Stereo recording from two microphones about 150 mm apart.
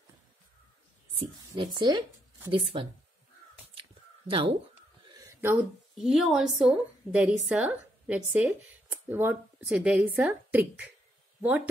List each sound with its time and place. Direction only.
1.5 s speech: 30° right (ahead or behind)
4.3 s speech: 35° right (ahead or behind)
5.0 s a sound: 25° right (ahead or behind)
5.9 s a woman's voice: centre (ahead or behind)